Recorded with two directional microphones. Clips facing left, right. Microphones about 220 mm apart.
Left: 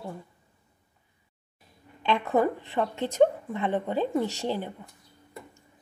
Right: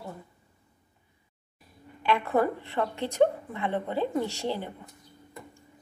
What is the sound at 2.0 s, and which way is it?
A woman's voice, 15° left (ahead or behind).